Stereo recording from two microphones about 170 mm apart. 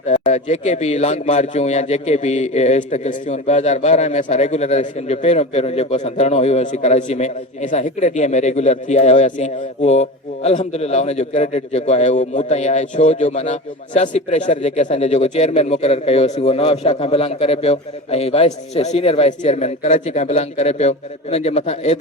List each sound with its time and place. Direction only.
0.1 s a man's voice: 45° left (ahead or behind)